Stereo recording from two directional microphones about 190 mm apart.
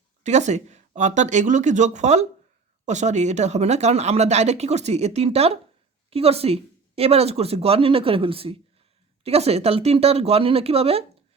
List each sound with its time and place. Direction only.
0.2 s speech: 35° right (ahead or behind)